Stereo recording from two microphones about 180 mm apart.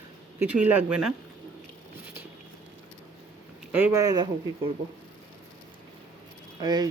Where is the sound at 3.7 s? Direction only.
15° right (ahead or behind).